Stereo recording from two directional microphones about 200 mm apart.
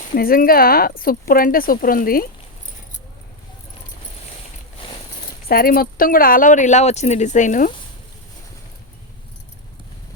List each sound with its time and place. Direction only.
0.1 s speech: 45° left (ahead or behind)
5.5 s speech: 50° left (ahead or behind)